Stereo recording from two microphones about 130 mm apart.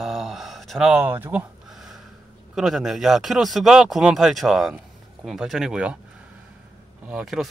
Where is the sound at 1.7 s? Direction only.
Centre (ahead or behind).